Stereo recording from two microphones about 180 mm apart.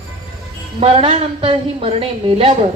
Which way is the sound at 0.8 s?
35° right (ahead or behind).